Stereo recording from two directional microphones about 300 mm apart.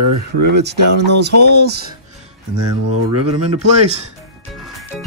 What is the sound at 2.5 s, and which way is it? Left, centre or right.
Speech, right.